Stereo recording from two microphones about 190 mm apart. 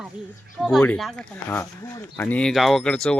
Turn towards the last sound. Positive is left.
turn(degrees=5)  # may be behind; listen again after turning